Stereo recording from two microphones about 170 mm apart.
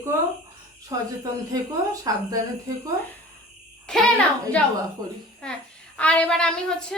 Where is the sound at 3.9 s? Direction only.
5° left (ahead or behind).